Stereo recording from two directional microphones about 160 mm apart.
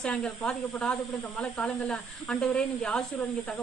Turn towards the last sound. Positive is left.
turn(degrees=5)  # may be behind; listen again after turning